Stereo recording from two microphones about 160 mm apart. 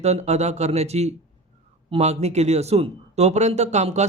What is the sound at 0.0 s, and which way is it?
Speech, 45° right (ahead or behind).